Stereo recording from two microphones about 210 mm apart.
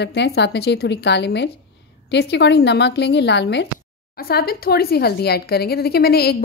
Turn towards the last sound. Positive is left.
turn(degrees=50)  # may be behind; listen again after turning